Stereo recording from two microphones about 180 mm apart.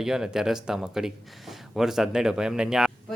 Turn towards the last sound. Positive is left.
turn(degrees=-5)  # may be behind; listen again after turning